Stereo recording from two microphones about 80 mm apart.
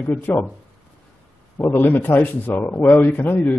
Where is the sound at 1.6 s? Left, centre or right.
Left.